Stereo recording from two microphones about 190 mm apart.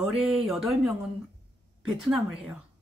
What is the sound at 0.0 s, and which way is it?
Speech, centre (ahead or behind).